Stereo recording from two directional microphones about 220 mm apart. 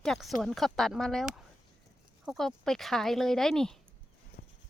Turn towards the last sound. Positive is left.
turn(degrees=40)  # may be behind; listen again after turning